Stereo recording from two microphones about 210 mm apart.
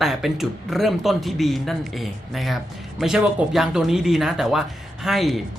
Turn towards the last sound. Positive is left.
turn(degrees=0)  # may be behind; listen again after turning